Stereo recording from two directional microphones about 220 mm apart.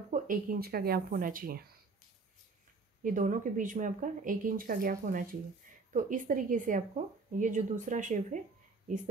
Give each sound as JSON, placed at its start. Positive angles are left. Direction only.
{"t": 0.1, "sound": "speech", "side_deg": -40}
{"t": 3.0, "sound": "speech", "side_deg": -35}